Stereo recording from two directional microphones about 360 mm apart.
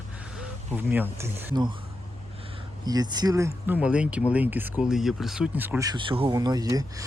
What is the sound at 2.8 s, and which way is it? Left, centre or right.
Speech, centre.